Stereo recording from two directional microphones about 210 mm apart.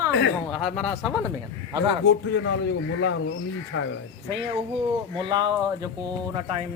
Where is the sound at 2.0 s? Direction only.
55° left (ahead or behind).